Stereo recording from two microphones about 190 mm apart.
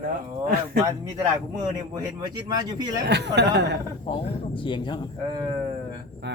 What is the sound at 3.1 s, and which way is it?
Speech, 65° right (ahead or behind).